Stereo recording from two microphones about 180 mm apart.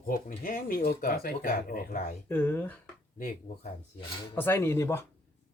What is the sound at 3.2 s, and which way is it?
Speech, 45° left (ahead or behind).